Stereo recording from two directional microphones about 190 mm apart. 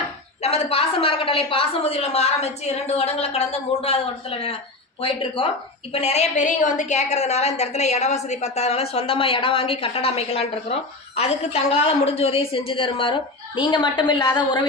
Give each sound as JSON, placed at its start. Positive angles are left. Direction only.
{"t": 0.4, "sound": "a woman's voice", "side_deg": 35}
{"t": 5.9, "sound": "a woman's voice", "side_deg": 35}